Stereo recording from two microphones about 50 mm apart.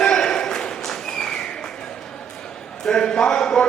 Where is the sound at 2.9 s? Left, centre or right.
Centre.